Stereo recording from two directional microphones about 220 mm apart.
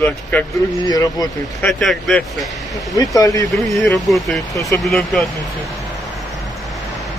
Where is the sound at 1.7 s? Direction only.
Centre (ahead or behind).